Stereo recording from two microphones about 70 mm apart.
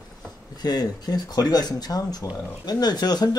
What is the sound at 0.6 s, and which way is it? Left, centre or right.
Speech, left.